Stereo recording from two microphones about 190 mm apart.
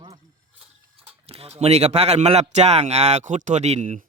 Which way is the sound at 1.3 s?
30° right (ahead or behind).